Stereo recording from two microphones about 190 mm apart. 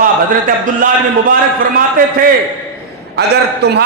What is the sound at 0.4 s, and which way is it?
Speech, 45° right (ahead or behind).